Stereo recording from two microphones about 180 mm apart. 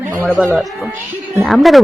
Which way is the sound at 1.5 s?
Centre (ahead or behind).